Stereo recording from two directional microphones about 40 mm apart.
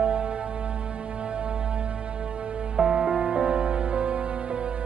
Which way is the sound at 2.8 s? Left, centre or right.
Centre.